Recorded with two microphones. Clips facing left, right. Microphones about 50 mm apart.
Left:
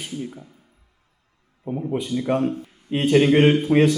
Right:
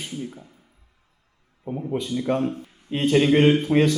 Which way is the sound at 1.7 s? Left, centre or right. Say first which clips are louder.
Left 2 dB; centre.